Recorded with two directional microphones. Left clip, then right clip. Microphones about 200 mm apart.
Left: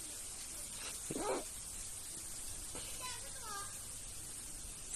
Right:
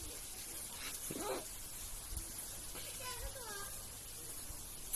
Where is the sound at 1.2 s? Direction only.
25° left (ahead or behind).